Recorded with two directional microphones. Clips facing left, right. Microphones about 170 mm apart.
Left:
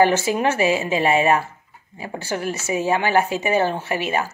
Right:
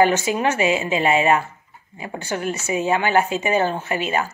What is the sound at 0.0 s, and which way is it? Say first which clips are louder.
Speech: even; 30° left (ahead or behind).